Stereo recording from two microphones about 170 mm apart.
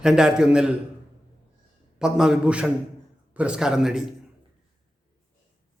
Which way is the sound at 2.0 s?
5° right (ahead or behind).